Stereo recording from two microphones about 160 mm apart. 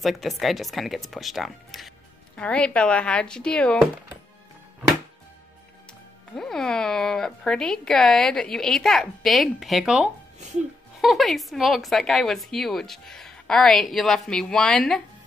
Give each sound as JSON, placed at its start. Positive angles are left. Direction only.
{"t": 0.0, "sound": "a woman's voice", "side_deg": 0}
{"t": 6.3, "sound": "a woman's voice", "side_deg": 0}